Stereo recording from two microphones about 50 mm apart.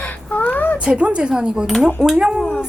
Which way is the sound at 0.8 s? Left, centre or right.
Right.